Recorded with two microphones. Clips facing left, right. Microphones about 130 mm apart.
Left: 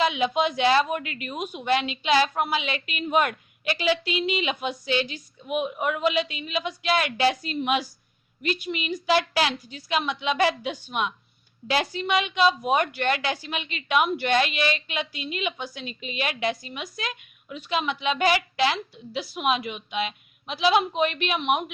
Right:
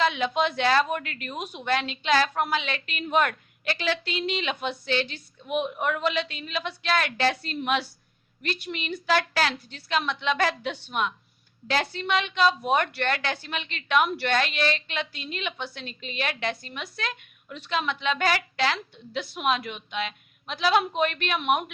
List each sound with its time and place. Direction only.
0.0 s a woman's voice: 10° left (ahead or behind)
11.6 s a woman's voice: 90° left
11.9 s a woman's voice: 10° left (ahead or behind)